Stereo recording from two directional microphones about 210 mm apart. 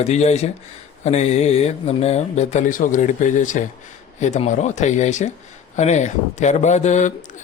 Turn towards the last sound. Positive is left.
turn(degrees=35)  # may be behind; listen again after turning